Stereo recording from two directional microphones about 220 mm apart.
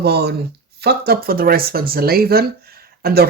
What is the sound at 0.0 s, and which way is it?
Speech, 45° right (ahead or behind).